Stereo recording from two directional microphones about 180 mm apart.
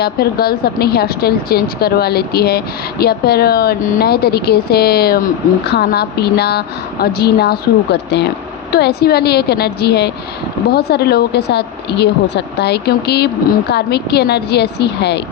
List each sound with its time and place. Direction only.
0.0 s speech: 60° left (ahead or behind)